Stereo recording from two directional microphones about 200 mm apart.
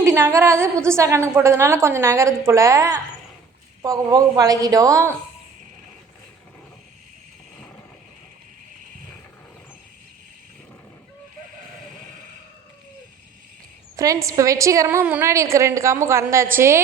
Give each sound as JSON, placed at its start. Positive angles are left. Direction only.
{"t": 0.0, "sound": "a woman's voice", "side_deg": -15}
{"t": 13.9, "sound": "a woman's voice", "side_deg": -15}